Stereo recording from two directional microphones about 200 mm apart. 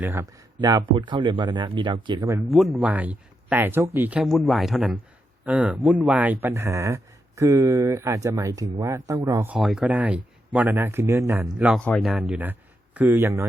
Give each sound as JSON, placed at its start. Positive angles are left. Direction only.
{"t": 0.0, "sound": "speech", "side_deg": -10}
{"t": 2.5, "sound": "speech", "side_deg": 0}
{"t": 9.6, "sound": "speech", "side_deg": 0}
{"t": 11.8, "sound": "speech", "side_deg": 5}